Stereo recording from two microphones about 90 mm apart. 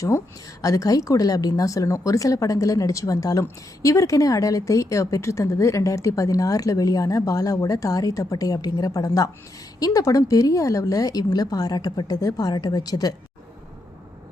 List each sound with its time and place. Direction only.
0.6 s a woman's voice: 40° left (ahead or behind)